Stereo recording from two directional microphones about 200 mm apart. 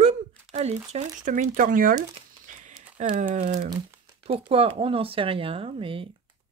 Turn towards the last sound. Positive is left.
turn(degrees=-25)  # may be behind; listen again after turning